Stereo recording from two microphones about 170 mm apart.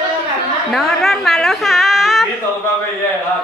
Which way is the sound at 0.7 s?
Centre (ahead or behind).